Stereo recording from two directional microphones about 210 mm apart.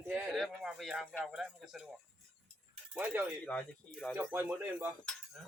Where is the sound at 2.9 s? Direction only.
5° right (ahead or behind).